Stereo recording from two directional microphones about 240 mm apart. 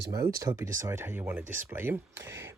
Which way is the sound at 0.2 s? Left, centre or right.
Centre.